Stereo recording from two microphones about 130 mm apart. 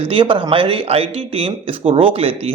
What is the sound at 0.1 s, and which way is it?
Speech, 40° right (ahead or behind).